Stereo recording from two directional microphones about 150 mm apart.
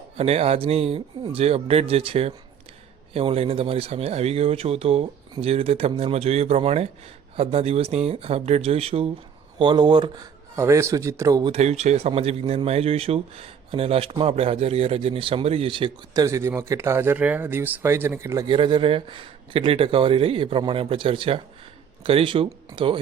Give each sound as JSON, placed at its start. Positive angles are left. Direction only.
{"t": 0.2, "sound": "speech", "side_deg": -45}
{"t": 10.5, "sound": "a man's voice", "side_deg": -20}
{"t": 11.5, "sound": "speech", "side_deg": -50}
{"t": 16.2, "sound": "speech", "side_deg": -20}
{"t": 18.4, "sound": "speech", "side_deg": -35}